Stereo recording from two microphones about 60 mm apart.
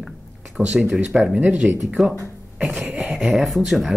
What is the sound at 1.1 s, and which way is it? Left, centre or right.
Speech, centre.